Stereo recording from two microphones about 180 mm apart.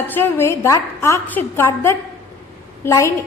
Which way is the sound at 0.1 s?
15° left (ahead or behind).